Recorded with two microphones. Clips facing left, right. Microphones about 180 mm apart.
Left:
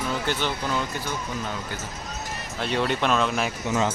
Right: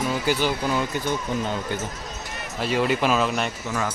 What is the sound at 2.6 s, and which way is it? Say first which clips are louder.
Speech: right 3 dB; 5° right (ahead or behind).